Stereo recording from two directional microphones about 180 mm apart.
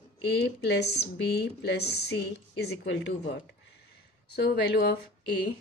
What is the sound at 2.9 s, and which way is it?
Speech, 85° left.